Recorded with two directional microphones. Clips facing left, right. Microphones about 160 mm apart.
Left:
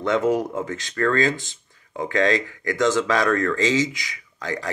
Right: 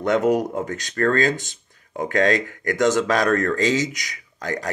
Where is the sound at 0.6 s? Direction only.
45° right (ahead or behind).